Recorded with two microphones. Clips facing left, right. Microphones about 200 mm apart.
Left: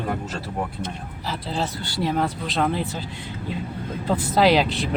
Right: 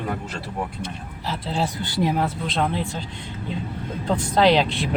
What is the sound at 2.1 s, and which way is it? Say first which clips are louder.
Speech: even; centre (ahead or behind).